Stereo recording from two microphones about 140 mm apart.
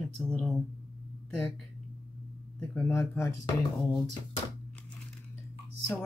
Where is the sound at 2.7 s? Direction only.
20° left (ahead or behind).